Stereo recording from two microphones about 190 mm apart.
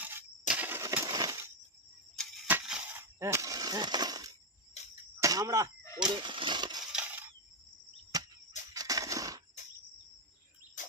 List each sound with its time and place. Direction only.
0.0 s breaking: 10° right (ahead or behind)
2.5 s a sound: 10° right (ahead or behind)
6.0 s speech: 25° right (ahead or behind)
6.9 s coin: 10° right (ahead or behind)
8.1 s cricket: 20° right (ahead or behind)
8.7 s a sound: 20° right (ahead or behind)